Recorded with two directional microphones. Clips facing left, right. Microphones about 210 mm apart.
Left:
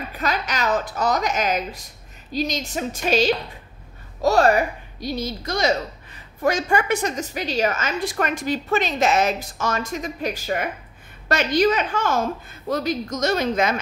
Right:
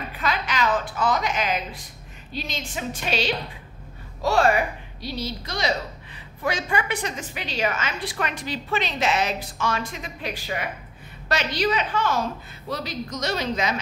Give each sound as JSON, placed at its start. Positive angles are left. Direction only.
{"t": 0.1, "sound": "a woman's voice", "side_deg": 40}